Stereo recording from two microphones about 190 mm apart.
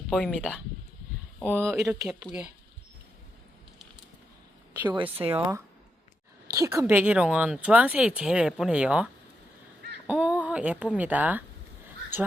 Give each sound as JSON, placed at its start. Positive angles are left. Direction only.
{"t": 0.1, "sound": "speech", "side_deg": 0}
{"t": 1.6, "sound": "speech", "side_deg": -5}
{"t": 4.9, "sound": "speech", "side_deg": -30}
{"t": 5.3, "sound": "speech", "side_deg": -15}
{"t": 10.1, "sound": "speech", "side_deg": -5}